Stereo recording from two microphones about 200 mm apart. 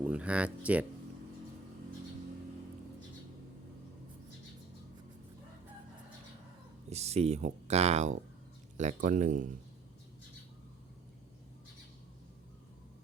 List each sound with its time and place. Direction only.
0.0 s speech: 5° right (ahead or behind)
6.9 s speech: 30° right (ahead or behind)